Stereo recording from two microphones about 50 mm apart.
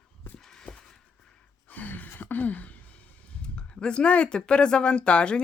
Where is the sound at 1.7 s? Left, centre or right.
Left.